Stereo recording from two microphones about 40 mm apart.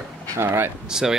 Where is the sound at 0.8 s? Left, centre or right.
Centre.